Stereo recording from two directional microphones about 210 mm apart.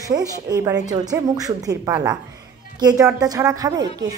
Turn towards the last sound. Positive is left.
turn(degrees=-15)  # may be behind; listen again after turning